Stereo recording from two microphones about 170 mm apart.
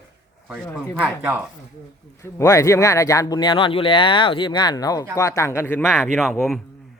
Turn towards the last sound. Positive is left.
turn(degrees=0)  # may be behind; listen again after turning